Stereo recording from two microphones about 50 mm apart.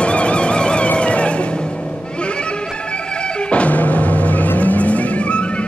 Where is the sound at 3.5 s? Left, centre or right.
Left.